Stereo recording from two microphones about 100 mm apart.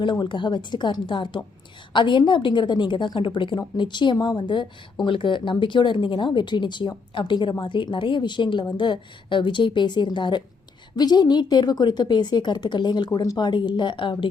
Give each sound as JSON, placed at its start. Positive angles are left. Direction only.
{"t": 0.0, "sound": "a woman's voice", "side_deg": 55}